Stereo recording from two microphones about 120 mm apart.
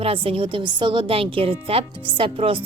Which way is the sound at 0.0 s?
50° right (ahead or behind).